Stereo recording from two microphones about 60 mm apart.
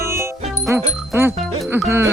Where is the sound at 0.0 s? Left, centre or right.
Right.